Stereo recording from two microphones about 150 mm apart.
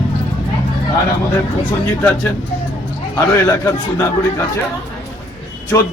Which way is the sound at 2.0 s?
10° left (ahead or behind).